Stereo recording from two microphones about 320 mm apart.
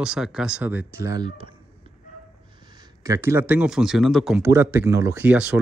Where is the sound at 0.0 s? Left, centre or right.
Centre.